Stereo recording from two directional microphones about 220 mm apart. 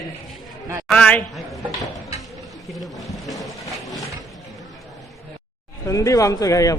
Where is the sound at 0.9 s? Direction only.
5° left (ahead or behind).